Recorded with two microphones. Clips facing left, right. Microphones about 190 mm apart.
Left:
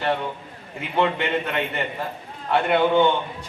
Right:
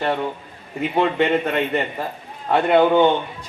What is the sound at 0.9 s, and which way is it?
A man's voice, 45° right (ahead or behind).